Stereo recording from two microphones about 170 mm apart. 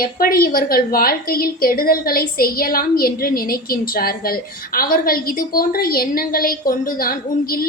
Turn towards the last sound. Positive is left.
turn(degrees=60)  # may be behind; listen again after turning